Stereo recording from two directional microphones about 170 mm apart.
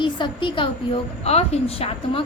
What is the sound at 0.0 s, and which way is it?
A woman's voice, 30° left (ahead or behind).